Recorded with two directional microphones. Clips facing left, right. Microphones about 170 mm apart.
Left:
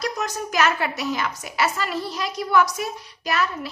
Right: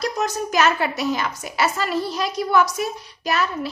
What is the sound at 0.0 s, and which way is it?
A woman's voice, 30° right (ahead or behind).